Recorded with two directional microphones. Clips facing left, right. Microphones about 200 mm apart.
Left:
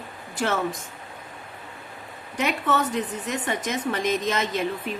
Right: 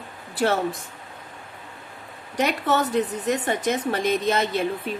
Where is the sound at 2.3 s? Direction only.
35° right (ahead or behind).